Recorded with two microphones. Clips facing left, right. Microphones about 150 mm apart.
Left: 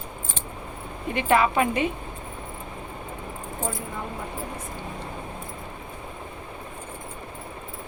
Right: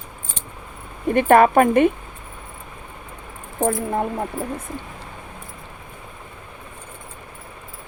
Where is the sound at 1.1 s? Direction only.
50° right (ahead or behind).